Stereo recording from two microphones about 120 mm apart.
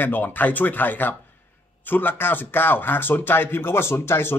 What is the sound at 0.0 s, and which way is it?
Speech, 15° left (ahead or behind).